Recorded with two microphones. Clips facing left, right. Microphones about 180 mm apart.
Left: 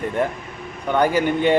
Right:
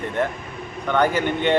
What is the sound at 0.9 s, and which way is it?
Speech, 10° left (ahead or behind).